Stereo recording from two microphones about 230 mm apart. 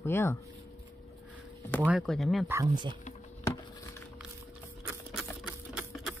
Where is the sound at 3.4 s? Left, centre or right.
Centre.